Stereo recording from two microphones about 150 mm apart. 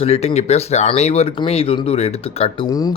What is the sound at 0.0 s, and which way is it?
A man's voice, 45° left (ahead or behind).